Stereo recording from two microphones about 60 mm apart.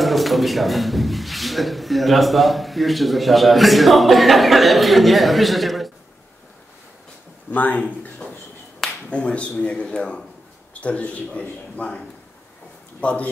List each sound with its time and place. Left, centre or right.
0.0 s speech: centre
7.5 s a man's voice: left
8.2 s finger snapping: centre
9.1 s a man's voice: centre
13.0 s a man's voice: left